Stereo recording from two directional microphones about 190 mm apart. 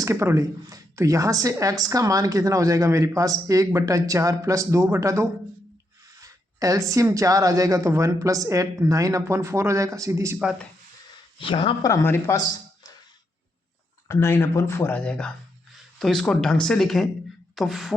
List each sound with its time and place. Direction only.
0.0 s speech: 15° right (ahead or behind)
11.3 s speech: 25° left (ahead or behind)
11.9 s speech: 15° left (ahead or behind)
14.1 s speech: 15° left (ahead or behind)
17.5 s beatboxing: centre (ahead or behind)